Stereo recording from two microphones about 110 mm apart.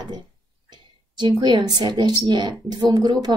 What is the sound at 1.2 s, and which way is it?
A woman's voice, 40° right (ahead or behind).